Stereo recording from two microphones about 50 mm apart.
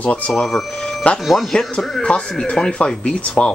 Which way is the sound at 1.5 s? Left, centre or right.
Centre.